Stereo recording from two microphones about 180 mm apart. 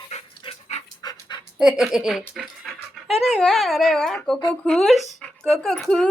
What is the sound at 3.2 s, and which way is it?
Speech, centre (ahead or behind).